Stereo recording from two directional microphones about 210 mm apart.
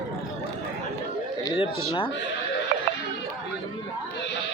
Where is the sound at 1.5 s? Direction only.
20° left (ahead or behind).